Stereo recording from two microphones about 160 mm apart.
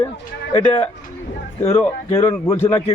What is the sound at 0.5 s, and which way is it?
Speech, 30° left (ahead or behind).